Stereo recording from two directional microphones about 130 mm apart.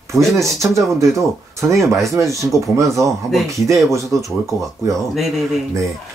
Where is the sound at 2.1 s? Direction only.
25° right (ahead or behind).